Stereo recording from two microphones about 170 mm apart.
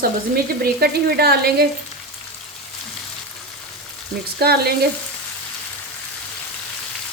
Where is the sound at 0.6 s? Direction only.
65° right (ahead or behind).